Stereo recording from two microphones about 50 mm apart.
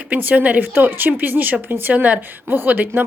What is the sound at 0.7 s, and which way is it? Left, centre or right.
A woman's voice, right.